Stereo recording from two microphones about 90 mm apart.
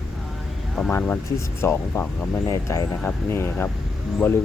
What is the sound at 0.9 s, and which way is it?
Speech, 30° left (ahead or behind).